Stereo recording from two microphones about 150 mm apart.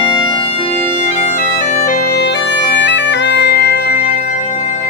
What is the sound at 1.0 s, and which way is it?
Bagpipes, 55° left (ahead or behind).